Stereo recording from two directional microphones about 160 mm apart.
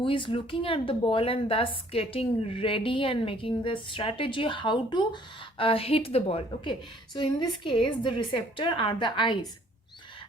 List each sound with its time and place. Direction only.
0.0 s a woman's voice: 30° left (ahead or behind)